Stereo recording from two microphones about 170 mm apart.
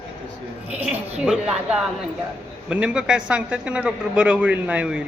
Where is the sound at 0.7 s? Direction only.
5° right (ahead or behind).